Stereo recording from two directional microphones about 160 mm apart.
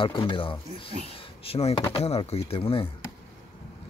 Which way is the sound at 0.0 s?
35° left (ahead or behind).